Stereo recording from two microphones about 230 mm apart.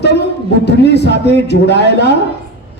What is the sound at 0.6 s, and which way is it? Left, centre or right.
Speech, left.